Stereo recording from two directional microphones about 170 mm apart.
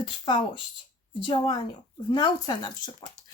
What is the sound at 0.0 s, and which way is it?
Speech, 30° left (ahead or behind).